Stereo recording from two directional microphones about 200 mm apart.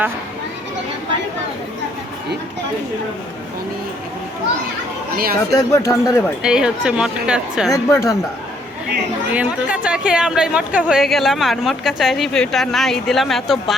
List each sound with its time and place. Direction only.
5.1 s speech: 45° right (ahead or behind)
5.5 s speech: 15° left (ahead or behind)
6.4 s speech: 5° right (ahead or behind)
7.7 s speech: 15° left (ahead or behind)
9.3 s speech: 5° right (ahead or behind)